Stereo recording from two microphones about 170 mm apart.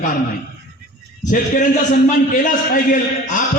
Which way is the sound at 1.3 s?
50° left (ahead or behind).